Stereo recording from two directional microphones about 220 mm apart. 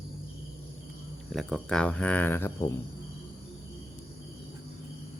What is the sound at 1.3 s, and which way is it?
Speech, centre (ahead or behind).